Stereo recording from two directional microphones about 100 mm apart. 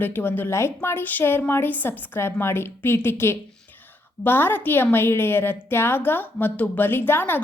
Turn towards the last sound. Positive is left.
turn(degrees=20)  # may be behind; listen again after turning